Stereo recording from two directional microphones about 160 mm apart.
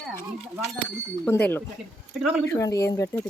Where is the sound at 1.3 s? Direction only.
10° left (ahead or behind).